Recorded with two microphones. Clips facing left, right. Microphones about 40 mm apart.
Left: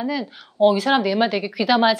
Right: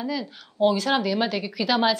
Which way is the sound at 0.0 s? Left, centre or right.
Centre.